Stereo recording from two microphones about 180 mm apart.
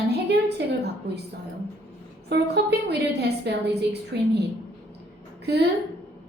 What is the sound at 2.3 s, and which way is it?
A woman's voice, 70° right (ahead or behind).